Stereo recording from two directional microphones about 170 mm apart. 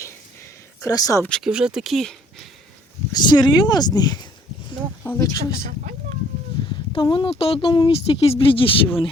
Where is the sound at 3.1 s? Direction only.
25° left (ahead or behind).